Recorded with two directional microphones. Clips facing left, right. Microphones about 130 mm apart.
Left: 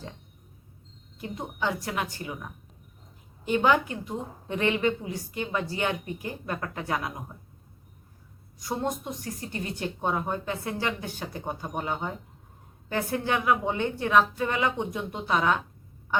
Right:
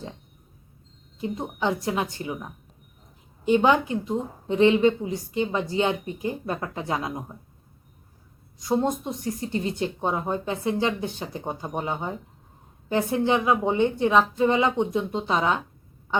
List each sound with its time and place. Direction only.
1.2 s a woman's voice: 25° right (ahead or behind)
8.5 s a woman's voice: 20° right (ahead or behind)